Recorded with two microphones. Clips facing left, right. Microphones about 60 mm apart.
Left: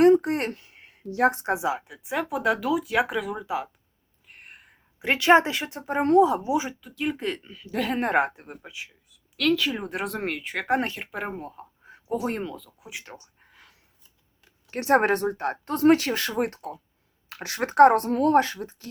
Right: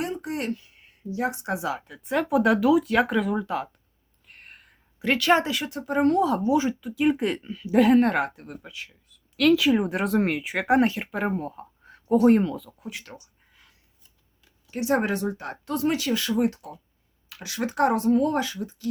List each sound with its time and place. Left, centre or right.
0.0 s speech: left
1.0 s a woman's voice: left
1.5 s speech: left
1.9 s speech: centre
4.3 s whispering: centre
4.9 s speech: left
6.8 s speech: centre
7.9 s speech: centre
12.8 s speech: centre
14.7 s speech: left